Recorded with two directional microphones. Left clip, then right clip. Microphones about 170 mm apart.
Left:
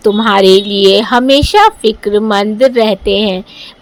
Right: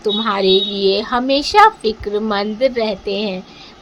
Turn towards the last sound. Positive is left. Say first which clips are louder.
# left 9 dB
turn(degrees=50)  # may be behind; listen again after turning